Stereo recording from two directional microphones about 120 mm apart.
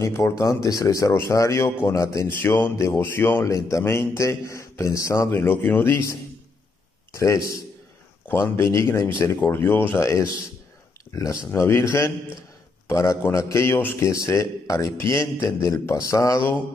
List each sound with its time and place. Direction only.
0.0 s speech: 25° left (ahead or behind)